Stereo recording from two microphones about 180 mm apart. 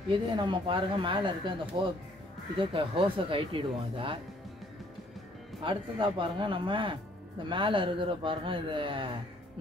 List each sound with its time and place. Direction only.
0.1 s speech: 25° right (ahead or behind)
5.6 s speech: 30° right (ahead or behind)